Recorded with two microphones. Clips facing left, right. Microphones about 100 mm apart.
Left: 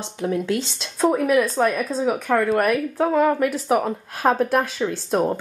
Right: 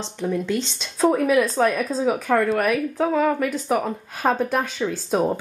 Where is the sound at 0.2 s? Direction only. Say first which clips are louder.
Left 1 dB; 5° left (ahead or behind).